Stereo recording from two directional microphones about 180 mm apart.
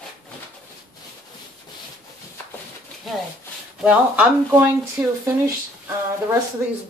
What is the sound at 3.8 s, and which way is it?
Speech, 5° right (ahead or behind).